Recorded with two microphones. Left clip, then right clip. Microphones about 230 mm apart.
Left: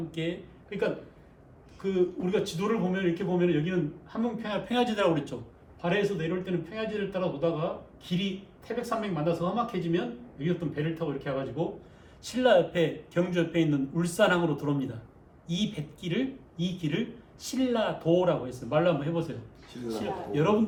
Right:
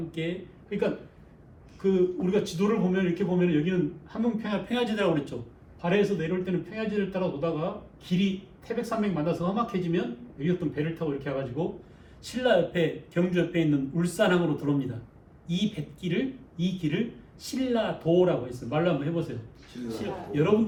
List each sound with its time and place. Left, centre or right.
0.1 s speech: centre
17.4 s speech: centre